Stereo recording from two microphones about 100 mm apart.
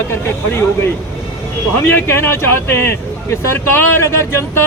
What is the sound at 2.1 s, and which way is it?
Speech, 25° left (ahead or behind).